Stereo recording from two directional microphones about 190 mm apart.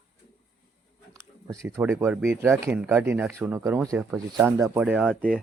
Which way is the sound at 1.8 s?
10° right (ahead or behind).